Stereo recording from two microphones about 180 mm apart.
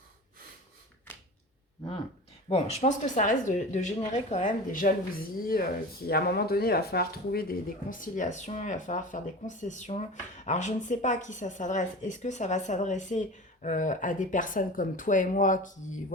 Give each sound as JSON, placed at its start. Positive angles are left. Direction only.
{"t": 2.5, "sound": "speech", "side_deg": 35}